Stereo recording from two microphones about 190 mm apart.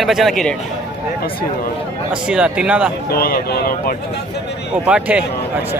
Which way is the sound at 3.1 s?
55° left (ahead or behind).